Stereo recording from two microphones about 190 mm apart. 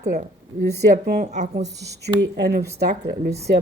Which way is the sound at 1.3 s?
40° right (ahead or behind).